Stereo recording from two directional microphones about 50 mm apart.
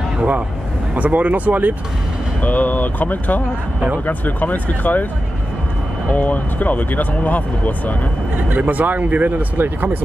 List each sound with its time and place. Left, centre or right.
0.9 s speech: right
2.4 s speech: left
6.1 s speech: left
8.4 s speech: right